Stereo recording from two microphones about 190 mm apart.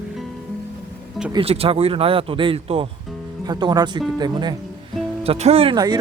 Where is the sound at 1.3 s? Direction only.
30° right (ahead or behind).